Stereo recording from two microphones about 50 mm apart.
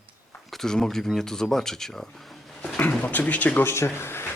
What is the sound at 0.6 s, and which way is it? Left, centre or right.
Speech, centre.